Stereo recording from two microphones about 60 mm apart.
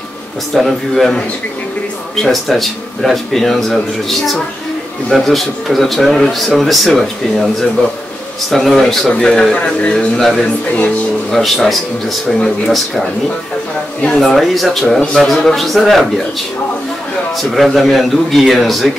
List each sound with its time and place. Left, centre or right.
0.6 s speech: centre
2.2 s a man's voice: centre
9.6 s a man's voice: left
9.9 s speech: centre
14.0 s speech: centre
17.4 s speech: centre